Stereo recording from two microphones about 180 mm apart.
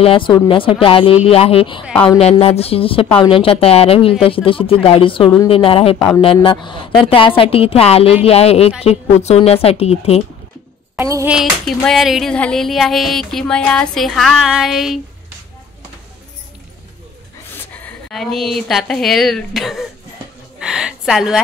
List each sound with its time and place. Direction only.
0.0 s speech: 30° left (ahead or behind)
5.9 s speech: 10° left (ahead or behind)
6.2 s speech: 30° left (ahead or behind)
11.0 s a sound: 15° right (ahead or behind)
11.2 s music: centre (ahead or behind)
18.1 s music: centre (ahead or behind)
20.5 s a woman's voice: 5° right (ahead or behind)